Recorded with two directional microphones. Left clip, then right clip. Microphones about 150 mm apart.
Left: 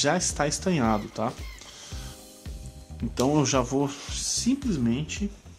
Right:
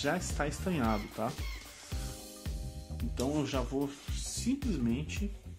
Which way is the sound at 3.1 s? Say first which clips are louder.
Left 10 dB; 35° left (ahead or behind).